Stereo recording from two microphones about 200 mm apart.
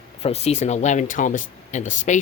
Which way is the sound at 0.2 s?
30° left (ahead or behind).